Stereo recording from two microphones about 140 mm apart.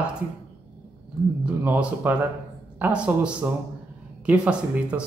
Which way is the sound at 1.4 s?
10° right (ahead or behind).